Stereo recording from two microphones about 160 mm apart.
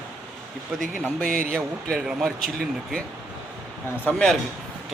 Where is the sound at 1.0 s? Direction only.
Centre (ahead or behind).